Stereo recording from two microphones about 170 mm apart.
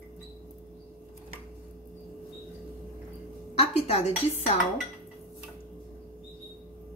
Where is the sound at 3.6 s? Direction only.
40° left (ahead or behind).